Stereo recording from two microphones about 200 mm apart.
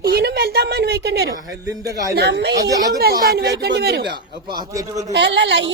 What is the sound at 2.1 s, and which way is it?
Speech, 55° right (ahead or behind).